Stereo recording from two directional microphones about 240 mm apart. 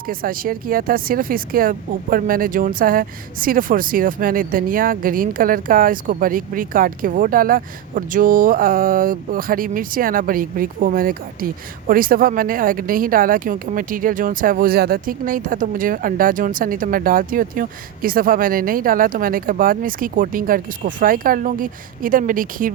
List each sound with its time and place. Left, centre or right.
0.1 s speech: right